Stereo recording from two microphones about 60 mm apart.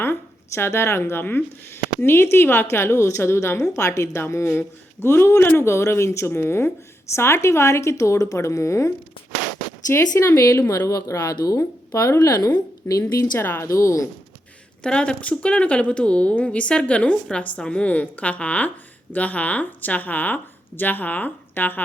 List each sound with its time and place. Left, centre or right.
0.0 s a sound: left
1.2 s speech: left
3.6 s speech: left
9.9 s speech: left
10.8 s a woman's voice: left
13.4 s speech: left
13.7 s speech: left
14.8 s speech: centre; by 21.8 s left